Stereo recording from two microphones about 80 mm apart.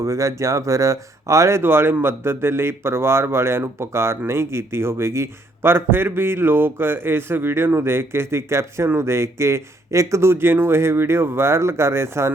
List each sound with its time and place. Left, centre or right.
0.0 s a man's voice: right